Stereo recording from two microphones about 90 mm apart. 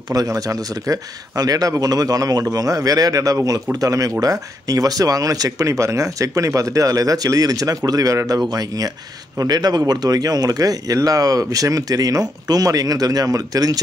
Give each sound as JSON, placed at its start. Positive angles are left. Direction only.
{"t": 0.1, "sound": "speech", "side_deg": -40}